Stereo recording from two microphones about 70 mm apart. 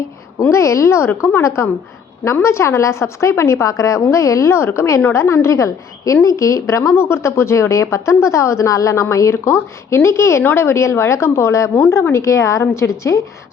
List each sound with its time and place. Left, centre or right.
0.5 s a woman's voice: left